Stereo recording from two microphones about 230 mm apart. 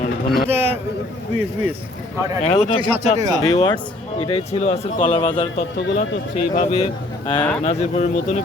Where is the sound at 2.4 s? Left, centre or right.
Left.